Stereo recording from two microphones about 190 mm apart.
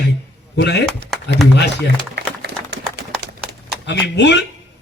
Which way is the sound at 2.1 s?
60° right (ahead or behind).